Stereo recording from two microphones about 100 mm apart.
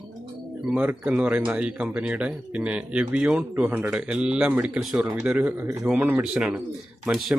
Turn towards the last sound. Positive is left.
turn(degrees=-10)  # may be behind; listen again after turning